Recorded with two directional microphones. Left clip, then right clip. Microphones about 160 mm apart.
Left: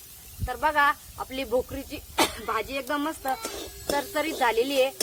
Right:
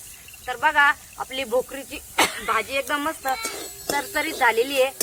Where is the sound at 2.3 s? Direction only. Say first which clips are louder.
Right 6 dB; 90° left.